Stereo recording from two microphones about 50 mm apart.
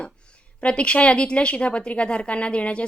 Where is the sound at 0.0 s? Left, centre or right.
Left.